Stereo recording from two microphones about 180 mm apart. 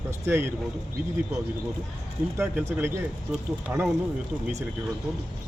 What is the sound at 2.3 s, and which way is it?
Speech, 15° right (ahead or behind).